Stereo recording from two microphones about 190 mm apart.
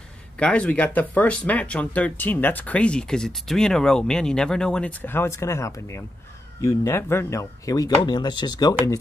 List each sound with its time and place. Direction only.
0.4 s speech: 5° left (ahead or behind); by 8.7 s 20° left (ahead or behind)